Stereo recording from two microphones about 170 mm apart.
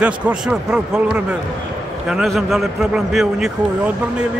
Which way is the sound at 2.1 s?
Centre (ahead or behind).